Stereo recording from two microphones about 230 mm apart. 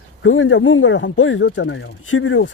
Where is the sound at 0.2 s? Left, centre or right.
Left.